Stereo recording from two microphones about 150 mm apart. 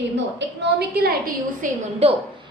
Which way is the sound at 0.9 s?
90° right.